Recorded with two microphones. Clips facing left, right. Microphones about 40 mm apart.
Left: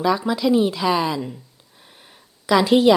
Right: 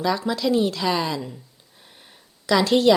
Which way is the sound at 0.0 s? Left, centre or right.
Centre.